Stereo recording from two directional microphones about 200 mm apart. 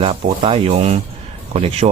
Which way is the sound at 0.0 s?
30° right (ahead or behind).